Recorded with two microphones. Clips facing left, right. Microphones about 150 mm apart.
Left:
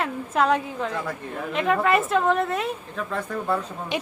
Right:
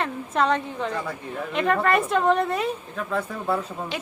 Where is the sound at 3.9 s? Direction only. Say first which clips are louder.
Left 6 dB; 20° left (ahead or behind).